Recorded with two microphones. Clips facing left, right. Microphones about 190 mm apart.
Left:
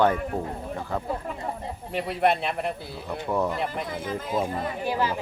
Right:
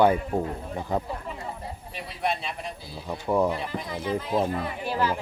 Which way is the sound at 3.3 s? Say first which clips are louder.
Right 3 dB; 10° right (ahead or behind).